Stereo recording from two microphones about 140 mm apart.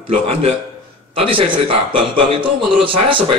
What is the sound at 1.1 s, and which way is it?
A man's voice, 40° right (ahead or behind).